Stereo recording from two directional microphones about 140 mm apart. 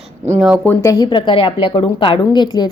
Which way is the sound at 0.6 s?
25° left (ahead or behind).